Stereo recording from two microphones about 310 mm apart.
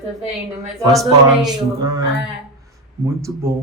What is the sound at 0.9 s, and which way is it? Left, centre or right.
Speech, centre.